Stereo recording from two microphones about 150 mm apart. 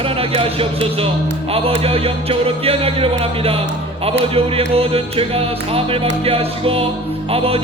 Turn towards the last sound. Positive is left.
turn(degrees=-40)  # may be behind; listen again after turning